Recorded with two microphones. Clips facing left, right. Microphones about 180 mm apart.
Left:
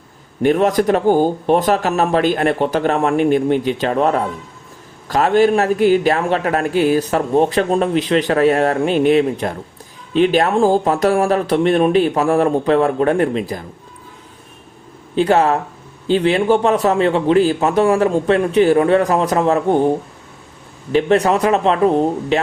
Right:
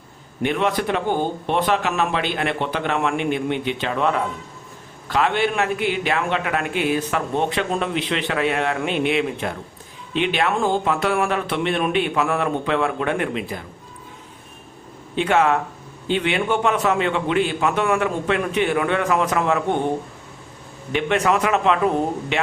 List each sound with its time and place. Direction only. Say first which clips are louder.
0.4 s a man's voice: left 7 dB; 40° left (ahead or behind)
15.1 s a man's voice: left 4 dB; 35° left (ahead or behind)
20.9 s a man's voice: left 6 dB; 35° left (ahead or behind)